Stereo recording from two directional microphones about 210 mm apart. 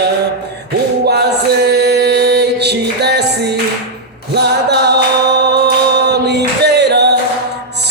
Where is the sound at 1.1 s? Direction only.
50° right (ahead or behind).